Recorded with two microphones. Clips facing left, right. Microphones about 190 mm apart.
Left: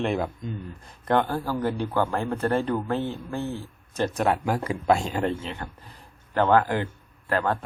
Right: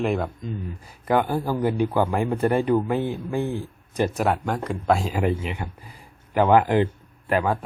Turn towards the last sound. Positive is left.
turn(degrees=-10)  # may be behind; listen again after turning